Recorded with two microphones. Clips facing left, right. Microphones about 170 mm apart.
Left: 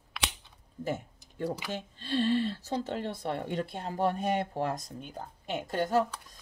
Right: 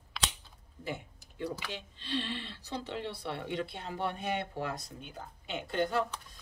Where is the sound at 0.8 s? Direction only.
45° left (ahead or behind).